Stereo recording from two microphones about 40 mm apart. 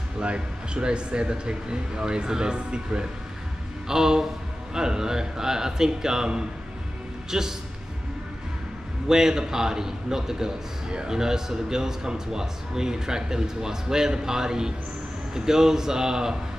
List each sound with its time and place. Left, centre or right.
0.2 s speech: right
9.0 s speech: centre